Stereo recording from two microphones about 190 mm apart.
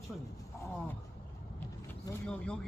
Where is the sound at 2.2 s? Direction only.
5° left (ahead or behind).